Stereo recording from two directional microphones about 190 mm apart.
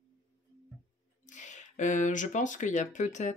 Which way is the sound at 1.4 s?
40° left (ahead or behind).